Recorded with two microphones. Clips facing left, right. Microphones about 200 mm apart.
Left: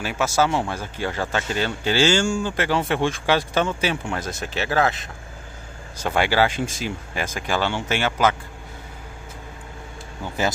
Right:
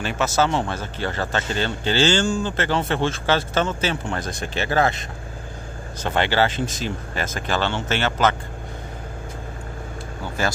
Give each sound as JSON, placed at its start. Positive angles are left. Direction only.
{"t": 0.0, "sound": "speech", "side_deg": 10}
{"t": 10.4, "sound": "speech", "side_deg": 20}